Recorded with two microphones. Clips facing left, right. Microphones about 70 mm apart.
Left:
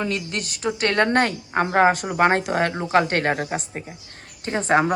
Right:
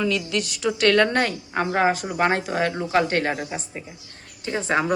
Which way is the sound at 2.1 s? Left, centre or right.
Left.